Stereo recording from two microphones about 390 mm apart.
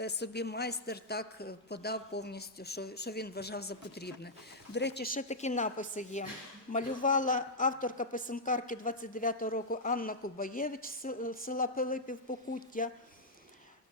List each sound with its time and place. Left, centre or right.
0.0 s a man's voice: left